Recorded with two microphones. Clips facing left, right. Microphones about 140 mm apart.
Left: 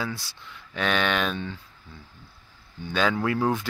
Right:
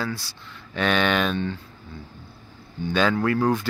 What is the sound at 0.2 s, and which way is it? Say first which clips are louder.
Speech: right 2 dB; centre (ahead or behind).